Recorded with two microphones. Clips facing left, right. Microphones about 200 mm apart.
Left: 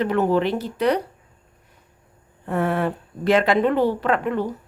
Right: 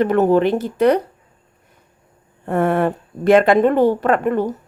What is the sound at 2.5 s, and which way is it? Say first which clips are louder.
A woman's voice: right 5 dB; 50° right (ahead or behind).